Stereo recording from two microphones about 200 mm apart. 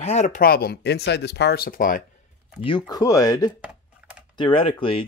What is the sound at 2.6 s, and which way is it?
Speech, 20° left (ahead or behind).